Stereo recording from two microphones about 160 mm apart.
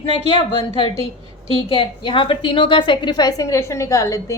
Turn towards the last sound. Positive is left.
turn(degrees=20)  # may be behind; listen again after turning